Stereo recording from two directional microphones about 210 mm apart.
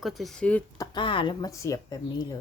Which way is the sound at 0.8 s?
25° left (ahead or behind).